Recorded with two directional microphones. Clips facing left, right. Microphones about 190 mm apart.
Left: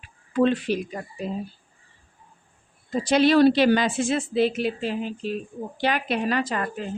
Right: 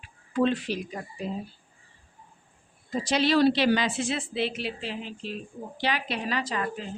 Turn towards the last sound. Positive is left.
turn(degrees=50)  # may be behind; listen again after turning